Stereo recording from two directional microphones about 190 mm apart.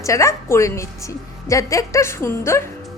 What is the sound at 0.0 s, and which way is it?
A woman's voice, 15° left (ahead or behind).